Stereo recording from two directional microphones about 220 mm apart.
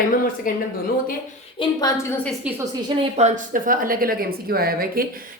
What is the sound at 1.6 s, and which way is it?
Speech, 20° left (ahead or behind).